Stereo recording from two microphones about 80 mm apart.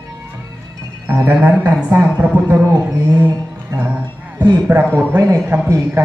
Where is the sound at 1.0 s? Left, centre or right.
Right.